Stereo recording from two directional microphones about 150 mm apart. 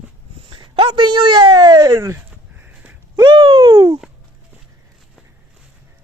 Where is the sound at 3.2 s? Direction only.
30° right (ahead or behind).